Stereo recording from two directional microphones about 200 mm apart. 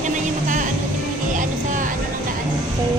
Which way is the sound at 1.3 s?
40° right (ahead or behind).